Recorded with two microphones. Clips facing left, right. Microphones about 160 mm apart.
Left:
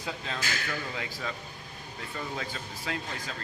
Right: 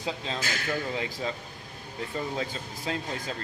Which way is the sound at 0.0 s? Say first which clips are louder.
Right 3 dB; 20° right (ahead or behind).